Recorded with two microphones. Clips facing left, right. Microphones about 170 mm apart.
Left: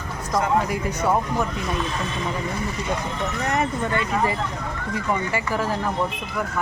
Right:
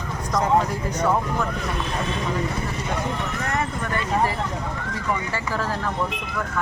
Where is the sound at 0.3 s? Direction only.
10° left (ahead or behind).